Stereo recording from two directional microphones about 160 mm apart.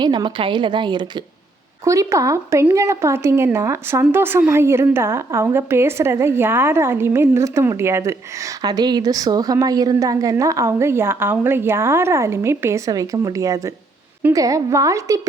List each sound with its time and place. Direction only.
0.0 s a woman's voice: 30° right (ahead or behind)